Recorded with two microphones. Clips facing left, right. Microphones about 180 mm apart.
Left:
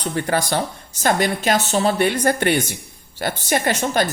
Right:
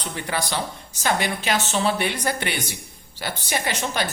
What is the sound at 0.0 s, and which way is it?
A woman's voice, 45° left (ahead or behind).